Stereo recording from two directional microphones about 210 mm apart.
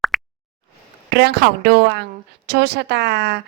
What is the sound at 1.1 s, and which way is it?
A woman's voice, 50° right (ahead or behind).